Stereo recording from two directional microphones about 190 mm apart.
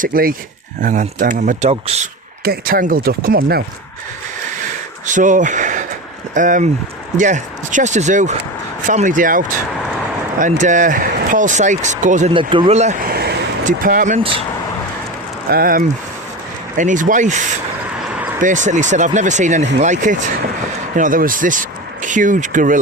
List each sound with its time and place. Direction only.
0.0 s speech: 50° right (ahead or behind)
5.0 s speech: 40° right (ahead or behind)
12.3 s speech: 25° right (ahead or behind)
13.1 s a sound: 55° right (ahead or behind)
15.4 s speech: 50° right (ahead or behind)
17.8 s vehicle: 5° right (ahead or behind)
18.3 s speech: 40° right (ahead or behind)